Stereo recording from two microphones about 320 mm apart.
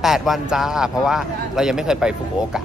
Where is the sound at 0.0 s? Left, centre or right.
Centre.